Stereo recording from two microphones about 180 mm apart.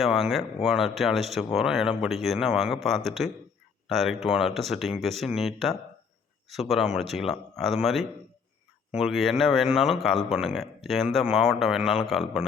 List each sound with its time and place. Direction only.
0.0 s speech: centre (ahead or behind)